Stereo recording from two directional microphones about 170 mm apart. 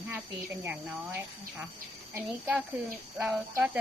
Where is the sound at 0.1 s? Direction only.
10° right (ahead or behind).